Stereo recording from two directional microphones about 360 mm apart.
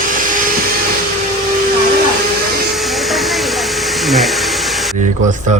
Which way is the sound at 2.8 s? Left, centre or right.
Centre.